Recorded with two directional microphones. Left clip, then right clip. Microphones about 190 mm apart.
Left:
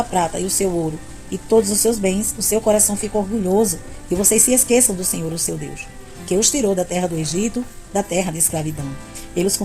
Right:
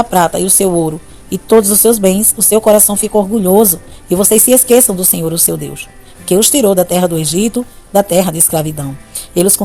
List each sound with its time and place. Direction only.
0.1 s a woman's voice: 45° right (ahead or behind)